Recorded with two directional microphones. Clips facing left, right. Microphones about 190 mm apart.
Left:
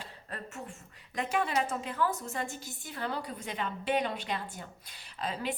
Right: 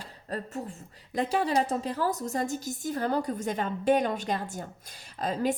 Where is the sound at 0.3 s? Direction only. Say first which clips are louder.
Right 8 dB; 35° right (ahead or behind).